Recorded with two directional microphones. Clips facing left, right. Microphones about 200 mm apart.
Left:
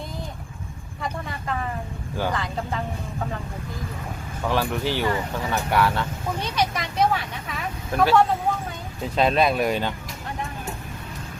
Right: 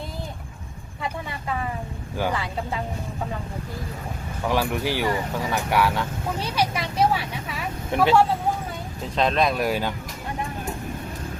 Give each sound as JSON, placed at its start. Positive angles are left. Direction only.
{"t": 2.1, "sound": "speech", "side_deg": -10}
{"t": 4.4, "sound": "speech", "side_deg": -15}
{"t": 7.9, "sound": "speech", "side_deg": -25}
{"t": 9.1, "sound": "speech", "side_deg": 5}